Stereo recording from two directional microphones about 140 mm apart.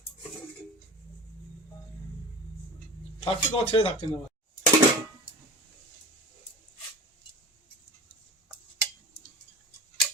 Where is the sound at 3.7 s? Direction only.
40° left (ahead or behind).